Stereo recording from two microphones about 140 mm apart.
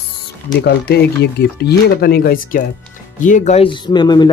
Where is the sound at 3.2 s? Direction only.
60° left (ahead or behind).